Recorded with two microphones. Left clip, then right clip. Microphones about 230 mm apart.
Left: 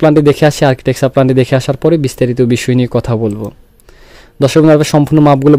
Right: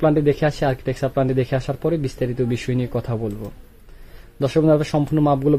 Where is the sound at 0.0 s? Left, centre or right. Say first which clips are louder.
Left 10 dB; left.